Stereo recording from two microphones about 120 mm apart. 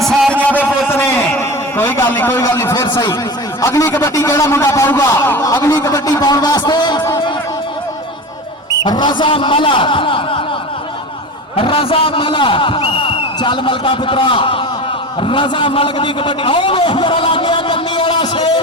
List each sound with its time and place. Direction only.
0.3 s a sound: 10° left (ahead or behind)
2.4 s a man's voice: 25° left (ahead or behind)
8.8 s a man's voice: 40° left (ahead or behind)
11.5 s a man's voice: 45° left (ahead or behind)